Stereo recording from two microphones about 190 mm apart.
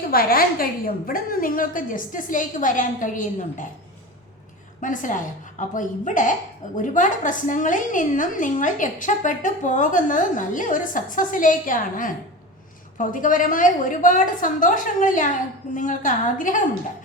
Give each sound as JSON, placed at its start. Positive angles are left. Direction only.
{"t": 0.1, "sound": "a woman's voice", "side_deg": 50}
{"t": 4.8, "sound": "a woman's voice", "side_deg": 45}